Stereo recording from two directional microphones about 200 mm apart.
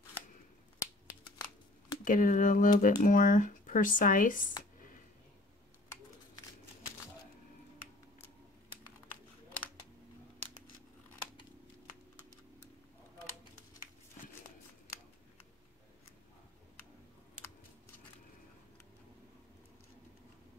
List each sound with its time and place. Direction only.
2.0 s speech: 40° left (ahead or behind)